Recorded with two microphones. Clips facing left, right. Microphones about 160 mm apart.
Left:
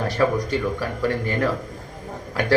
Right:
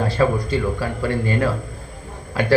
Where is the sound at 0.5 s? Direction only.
15° right (ahead or behind).